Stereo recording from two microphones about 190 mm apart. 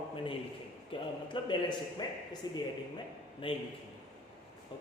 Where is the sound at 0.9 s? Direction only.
25° left (ahead or behind).